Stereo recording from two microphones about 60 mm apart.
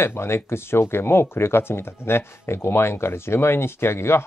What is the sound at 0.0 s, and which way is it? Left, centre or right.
Speech, left.